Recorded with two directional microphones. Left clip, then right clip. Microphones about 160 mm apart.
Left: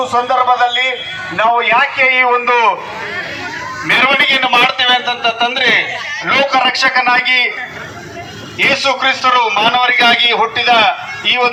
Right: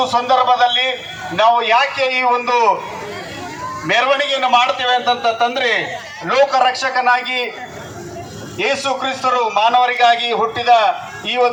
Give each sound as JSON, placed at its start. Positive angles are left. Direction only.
{"t": 0.1, "sound": "a man's voice", "side_deg": 40}
{"t": 1.4, "sound": "a man's voice", "side_deg": 25}
{"t": 2.5, "sound": "a man's voice", "side_deg": -5}
{"t": 4.4, "sound": "a man's voice", "side_deg": -75}
{"t": 6.2, "sound": "a man's voice", "side_deg": -70}
{"t": 8.5, "sound": "a man's voice", "side_deg": -70}